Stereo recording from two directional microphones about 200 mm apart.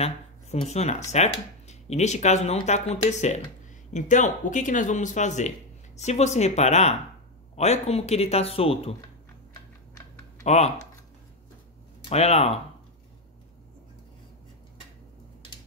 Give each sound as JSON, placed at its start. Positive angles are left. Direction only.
{"t": 0.0, "sound": "speech", "side_deg": 35}
{"t": 10.4, "sound": "speech", "side_deg": 35}
{"t": 12.0, "sound": "speech", "side_deg": 30}